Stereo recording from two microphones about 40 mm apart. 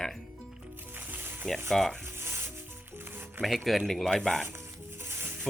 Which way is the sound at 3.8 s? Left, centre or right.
Centre.